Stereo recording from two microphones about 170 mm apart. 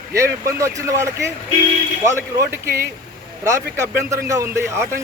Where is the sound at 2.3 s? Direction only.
15° right (ahead or behind).